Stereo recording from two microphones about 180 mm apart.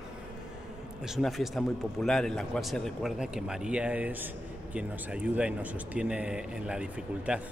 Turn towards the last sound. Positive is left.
turn(degrees=-5)  # may be behind; listen again after turning